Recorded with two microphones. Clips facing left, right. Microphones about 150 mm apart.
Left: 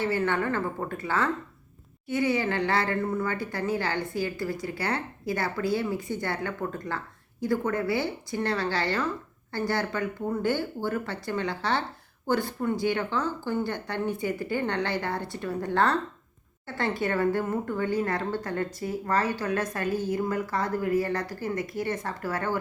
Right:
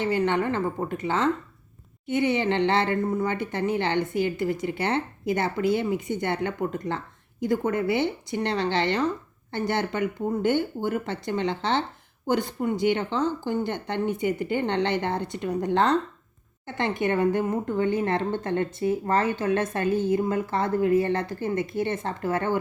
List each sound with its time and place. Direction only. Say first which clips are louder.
0.0 s a woman's voice: right 3 dB; 20° right (ahead or behind)